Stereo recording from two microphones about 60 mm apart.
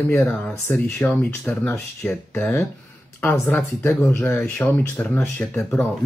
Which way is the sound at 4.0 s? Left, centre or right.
Left.